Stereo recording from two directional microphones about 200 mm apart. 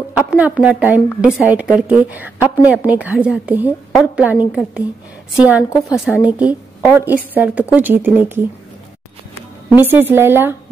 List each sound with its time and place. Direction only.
0.1 s a woman's voice: 5° right (ahead or behind)
9.7 s a woman's voice: 10° right (ahead or behind)